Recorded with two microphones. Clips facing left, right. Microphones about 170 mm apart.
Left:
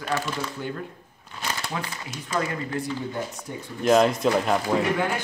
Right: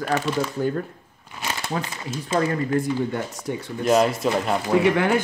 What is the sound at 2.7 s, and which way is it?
Speech, 45° right (ahead or behind).